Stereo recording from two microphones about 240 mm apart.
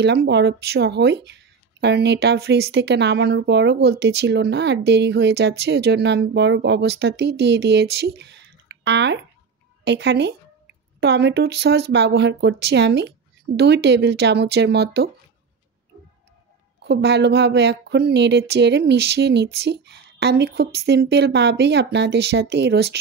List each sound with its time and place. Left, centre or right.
0.0 s speech: right
16.8 s speech: right